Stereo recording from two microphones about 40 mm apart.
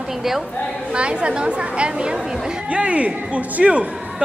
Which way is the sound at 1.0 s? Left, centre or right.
Right.